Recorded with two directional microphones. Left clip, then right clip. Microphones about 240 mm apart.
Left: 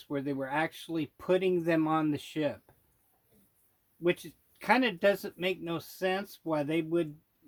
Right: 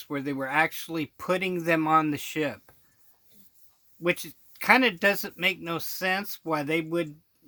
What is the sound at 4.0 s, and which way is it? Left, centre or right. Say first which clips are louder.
Speech: right 3 dB; right.